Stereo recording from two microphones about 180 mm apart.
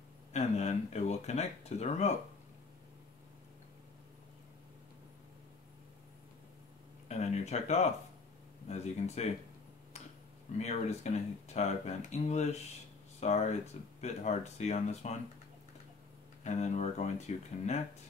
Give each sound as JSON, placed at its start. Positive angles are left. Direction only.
{"t": 0.3, "sound": "speech", "side_deg": 40}
{"t": 7.1, "sound": "speech", "side_deg": 40}
{"t": 10.6, "sound": "speech", "side_deg": 40}
{"t": 16.4, "sound": "speech", "side_deg": 40}